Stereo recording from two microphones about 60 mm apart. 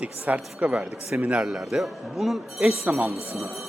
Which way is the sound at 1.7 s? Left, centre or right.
Centre.